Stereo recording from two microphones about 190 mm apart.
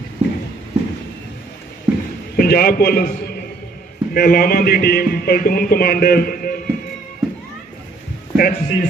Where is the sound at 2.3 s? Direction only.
50° left (ahead or behind).